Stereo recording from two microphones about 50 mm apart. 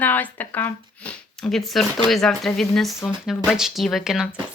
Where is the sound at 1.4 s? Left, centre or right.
Centre.